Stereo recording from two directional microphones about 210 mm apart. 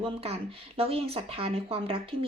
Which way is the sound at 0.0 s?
25° right (ahead or behind).